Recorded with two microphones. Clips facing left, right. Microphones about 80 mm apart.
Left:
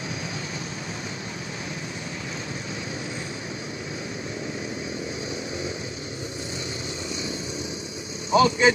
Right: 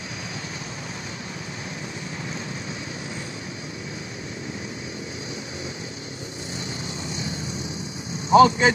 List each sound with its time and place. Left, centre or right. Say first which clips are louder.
8.3 s speech: right 4 dB; right